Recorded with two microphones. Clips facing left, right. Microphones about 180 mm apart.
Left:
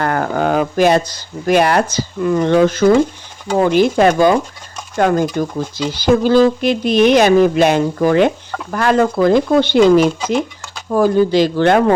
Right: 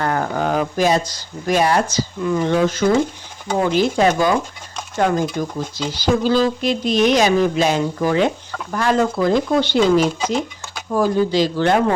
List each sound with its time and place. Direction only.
0.0 s speech: 65° left (ahead or behind)